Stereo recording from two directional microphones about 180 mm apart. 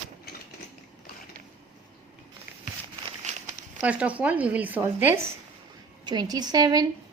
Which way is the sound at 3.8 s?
5° right (ahead or behind).